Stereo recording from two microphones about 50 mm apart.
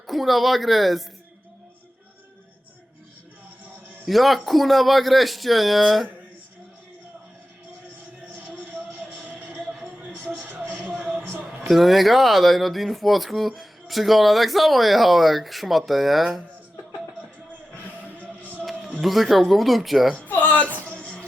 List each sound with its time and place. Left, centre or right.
0.1 s speech: centre
4.0 s speech: centre
8.4 s a sound: right
10.5 s music: right
11.6 s speech: centre
18.2 s music: left
18.6 s music: centre
19.0 s speech: centre
20.1 s music: left